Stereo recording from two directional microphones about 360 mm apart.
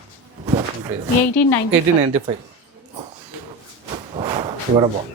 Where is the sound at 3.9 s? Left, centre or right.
Centre.